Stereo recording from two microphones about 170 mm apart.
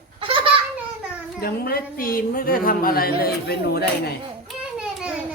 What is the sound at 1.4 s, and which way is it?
A woman's voice, 60° left (ahead or behind).